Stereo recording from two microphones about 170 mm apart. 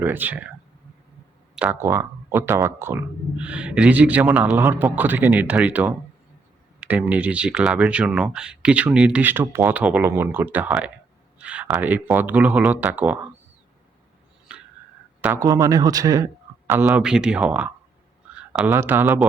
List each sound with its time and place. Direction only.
0.0 s speech: 10° right (ahead or behind)
1.5 s speech: 10° right (ahead or behind)
14.5 s a sound: 5° right (ahead or behind)
15.2 s a man's voice: 15° right (ahead or behind)